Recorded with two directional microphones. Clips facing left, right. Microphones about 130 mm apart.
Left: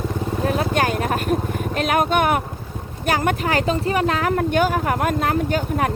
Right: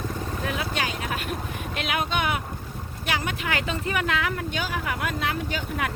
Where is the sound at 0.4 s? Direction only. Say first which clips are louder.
Left 9 dB; 45° left (ahead or behind).